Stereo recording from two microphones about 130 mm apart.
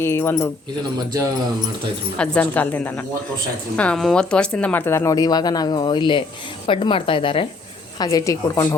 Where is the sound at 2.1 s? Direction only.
10° left (ahead or behind).